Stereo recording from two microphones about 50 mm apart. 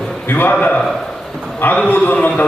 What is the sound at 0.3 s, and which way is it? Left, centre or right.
Speech, left.